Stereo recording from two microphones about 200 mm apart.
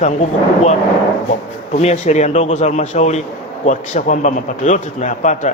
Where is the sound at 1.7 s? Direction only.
35° left (ahead or behind).